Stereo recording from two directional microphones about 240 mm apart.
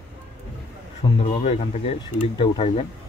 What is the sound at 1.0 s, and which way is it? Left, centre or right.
Speech, left.